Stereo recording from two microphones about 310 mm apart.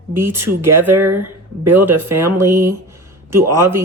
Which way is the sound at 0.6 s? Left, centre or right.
Right.